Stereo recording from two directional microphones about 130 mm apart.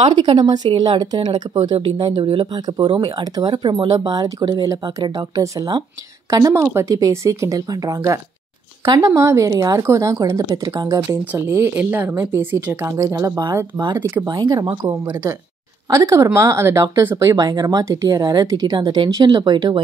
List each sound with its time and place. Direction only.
0.1 s speech: 35° right (ahead or behind); by 14.2 s 15° right (ahead or behind)
14.2 s speech: 30° right (ahead or behind)